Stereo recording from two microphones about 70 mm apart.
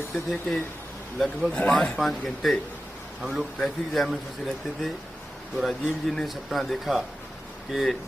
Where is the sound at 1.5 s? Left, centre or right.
Centre.